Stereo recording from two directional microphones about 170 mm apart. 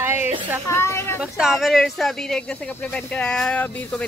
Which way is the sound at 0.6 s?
15° left (ahead or behind).